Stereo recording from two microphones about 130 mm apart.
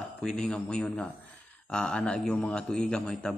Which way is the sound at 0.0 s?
5° left (ahead or behind).